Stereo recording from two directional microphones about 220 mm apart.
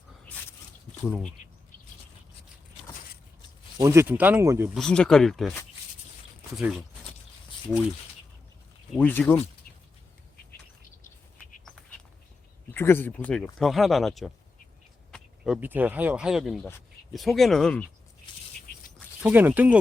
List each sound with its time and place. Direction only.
1.0 s speech: 5° left (ahead or behind)
3.8 s speech: 15° right (ahead or behind)
4.8 s speech: 5° left (ahead or behind)
6.6 s speech: centre (ahead or behind)
8.9 s speech: 5° left (ahead or behind)
12.7 s speech: 10° left (ahead or behind)
19.2 s speech: 10° right (ahead or behind)